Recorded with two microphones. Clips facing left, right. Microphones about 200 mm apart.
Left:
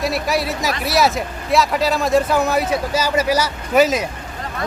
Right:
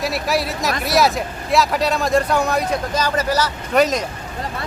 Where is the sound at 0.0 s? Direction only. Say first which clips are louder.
Left 1 dB; centre (ahead or behind).